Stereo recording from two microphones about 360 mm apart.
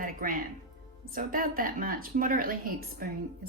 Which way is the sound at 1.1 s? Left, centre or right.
Right.